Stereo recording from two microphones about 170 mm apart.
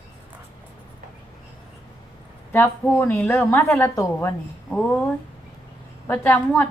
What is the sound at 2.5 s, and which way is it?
A woman's voice, 10° left (ahead or behind).